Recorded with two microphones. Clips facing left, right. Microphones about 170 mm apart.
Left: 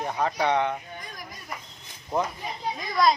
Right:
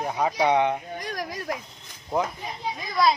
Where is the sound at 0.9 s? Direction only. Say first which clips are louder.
Right 9 dB; 90° right.